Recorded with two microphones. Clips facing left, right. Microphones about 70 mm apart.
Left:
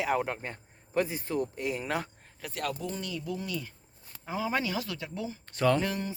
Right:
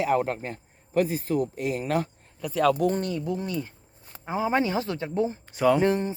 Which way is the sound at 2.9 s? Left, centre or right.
Right.